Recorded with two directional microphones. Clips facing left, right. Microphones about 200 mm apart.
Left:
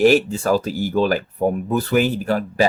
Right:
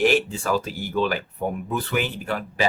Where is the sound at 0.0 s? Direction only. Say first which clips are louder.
Left 6 dB; 40° left (ahead or behind).